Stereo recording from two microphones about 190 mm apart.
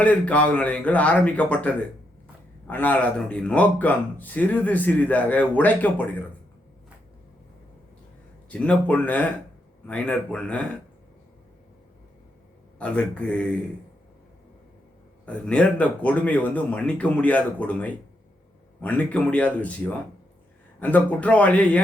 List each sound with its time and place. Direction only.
0.0 s speech: 5° left (ahead or behind)
8.4 s speech: 5° left (ahead or behind)
12.8 s speech: 5° left (ahead or behind)
15.3 s speech: 5° left (ahead or behind)